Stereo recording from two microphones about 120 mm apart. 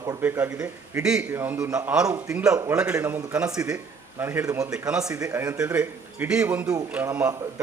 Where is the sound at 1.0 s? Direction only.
5° right (ahead or behind).